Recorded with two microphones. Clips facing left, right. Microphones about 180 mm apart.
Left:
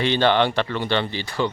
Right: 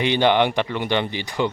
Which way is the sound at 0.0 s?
15° right (ahead or behind).